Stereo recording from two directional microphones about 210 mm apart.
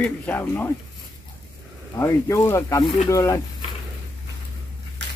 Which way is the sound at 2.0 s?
15° left (ahead or behind).